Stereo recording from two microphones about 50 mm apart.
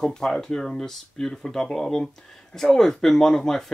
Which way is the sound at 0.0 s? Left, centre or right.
Centre.